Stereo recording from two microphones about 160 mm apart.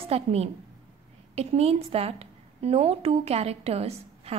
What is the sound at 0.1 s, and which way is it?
A woman's voice, 40° right (ahead or behind).